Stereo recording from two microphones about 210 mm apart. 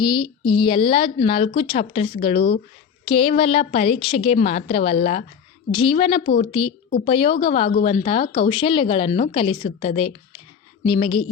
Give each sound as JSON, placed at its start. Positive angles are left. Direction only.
{"t": 0.0, "sound": "speech", "side_deg": 20}